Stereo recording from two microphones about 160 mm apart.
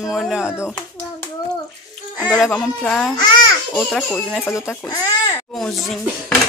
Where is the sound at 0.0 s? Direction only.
Centre (ahead or behind).